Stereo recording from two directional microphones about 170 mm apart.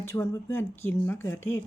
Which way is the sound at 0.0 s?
15° left (ahead or behind).